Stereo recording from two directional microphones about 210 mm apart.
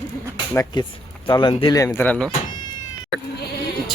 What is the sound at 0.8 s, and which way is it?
Speech, 20° left (ahead or behind).